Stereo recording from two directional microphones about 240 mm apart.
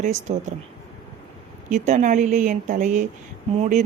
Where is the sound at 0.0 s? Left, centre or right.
Right.